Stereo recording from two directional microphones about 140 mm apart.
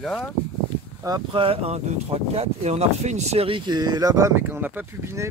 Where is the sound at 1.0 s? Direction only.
30° right (ahead or behind).